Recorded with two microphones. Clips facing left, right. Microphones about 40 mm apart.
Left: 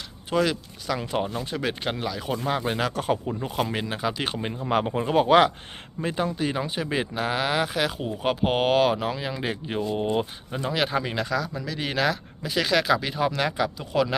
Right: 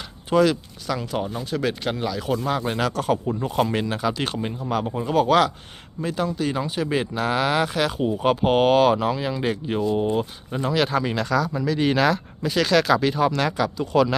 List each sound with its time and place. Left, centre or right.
0.3 s speech: centre
0.9 s speech: centre
4.6 s speech: left
4.9 s speech: left; by 14.2 s centre